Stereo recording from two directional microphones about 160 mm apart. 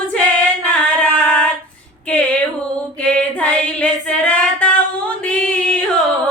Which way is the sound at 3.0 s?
10° left (ahead or behind).